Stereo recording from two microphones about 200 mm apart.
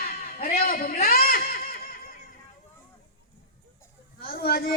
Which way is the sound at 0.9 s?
45° left (ahead or behind).